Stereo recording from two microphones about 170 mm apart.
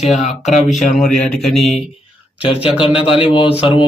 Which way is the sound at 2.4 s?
35° left (ahead or behind).